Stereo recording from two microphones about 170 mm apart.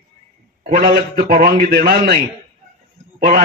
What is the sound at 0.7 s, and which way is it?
A man's voice, 60° right (ahead or behind).